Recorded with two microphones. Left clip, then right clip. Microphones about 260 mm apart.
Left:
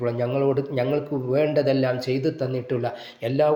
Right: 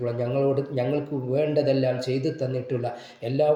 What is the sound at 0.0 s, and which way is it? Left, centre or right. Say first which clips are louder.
A man's voice: left 2 dB; left.